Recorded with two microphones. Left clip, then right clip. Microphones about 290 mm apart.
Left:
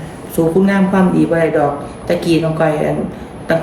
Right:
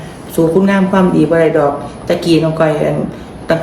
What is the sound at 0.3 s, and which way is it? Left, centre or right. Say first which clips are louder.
A man's voice: right 2 dB; centre.